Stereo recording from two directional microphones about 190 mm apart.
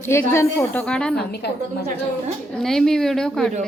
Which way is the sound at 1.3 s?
60° left (ahead or behind).